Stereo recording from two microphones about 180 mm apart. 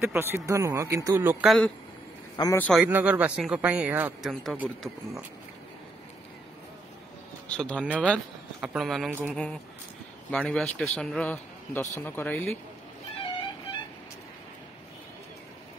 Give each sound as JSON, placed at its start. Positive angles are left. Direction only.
{"t": 0.0, "sound": "speech", "side_deg": -15}
{"t": 2.3, "sound": "a man's voice", "side_deg": 20}
{"t": 2.8, "sound": "speech", "side_deg": -10}
{"t": 7.4, "sound": "speech", "side_deg": 5}
{"t": 7.8, "sound": "a man's voice", "side_deg": -5}